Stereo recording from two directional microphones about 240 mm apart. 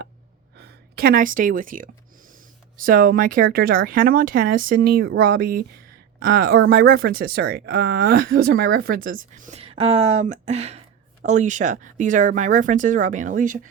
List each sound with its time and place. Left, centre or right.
0.6 s speech: right